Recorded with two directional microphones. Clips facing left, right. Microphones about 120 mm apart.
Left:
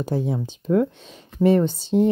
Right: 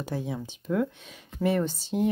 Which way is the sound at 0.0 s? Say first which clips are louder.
Left 8 dB; 30° left (ahead or behind).